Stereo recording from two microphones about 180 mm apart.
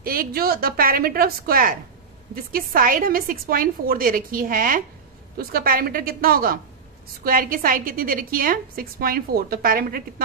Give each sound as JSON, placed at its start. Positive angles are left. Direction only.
{"t": 0.0, "sound": "a woman's voice", "side_deg": -55}